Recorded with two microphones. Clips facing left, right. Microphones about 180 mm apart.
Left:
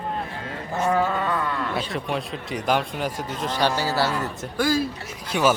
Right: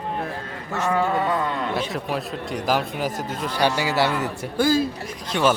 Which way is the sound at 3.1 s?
50° right (ahead or behind).